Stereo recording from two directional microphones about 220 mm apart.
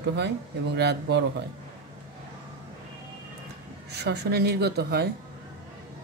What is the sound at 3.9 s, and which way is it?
Speech, 50° right (ahead or behind).